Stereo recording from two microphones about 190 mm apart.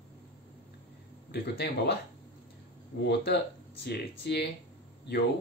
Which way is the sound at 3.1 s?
60° left (ahead or behind).